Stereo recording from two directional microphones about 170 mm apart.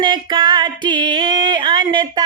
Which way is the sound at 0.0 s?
25° right (ahead or behind).